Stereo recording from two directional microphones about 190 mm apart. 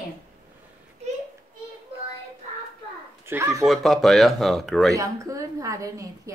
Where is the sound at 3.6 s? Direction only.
Centre (ahead or behind).